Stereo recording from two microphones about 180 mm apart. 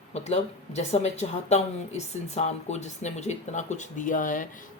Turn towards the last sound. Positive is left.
turn(degrees=45)  # may be behind; listen again after turning